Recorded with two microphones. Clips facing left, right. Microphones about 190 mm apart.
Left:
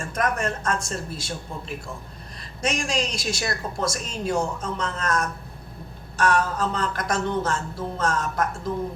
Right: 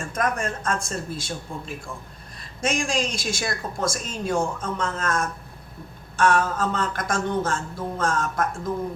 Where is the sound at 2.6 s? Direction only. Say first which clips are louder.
Right 1 dB; 50° right (ahead or behind).